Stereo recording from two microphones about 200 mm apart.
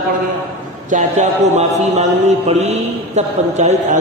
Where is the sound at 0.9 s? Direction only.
35° right (ahead or behind).